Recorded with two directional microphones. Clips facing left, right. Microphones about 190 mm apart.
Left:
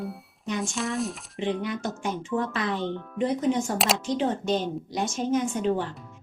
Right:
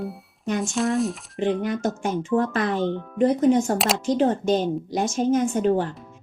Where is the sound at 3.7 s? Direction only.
Centre (ahead or behind).